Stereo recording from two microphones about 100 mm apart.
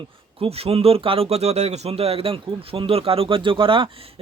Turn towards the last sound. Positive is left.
turn(degrees=-60)  # may be behind; listen again after turning